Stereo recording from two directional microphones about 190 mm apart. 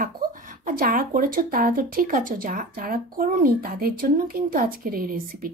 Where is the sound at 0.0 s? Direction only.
45° right (ahead or behind).